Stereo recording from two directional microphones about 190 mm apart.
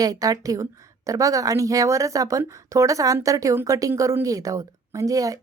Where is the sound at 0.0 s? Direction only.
20° right (ahead or behind).